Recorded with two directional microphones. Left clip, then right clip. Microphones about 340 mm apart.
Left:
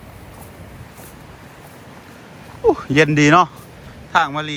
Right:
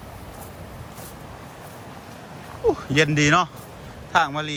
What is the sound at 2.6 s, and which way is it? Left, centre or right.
Speech, centre.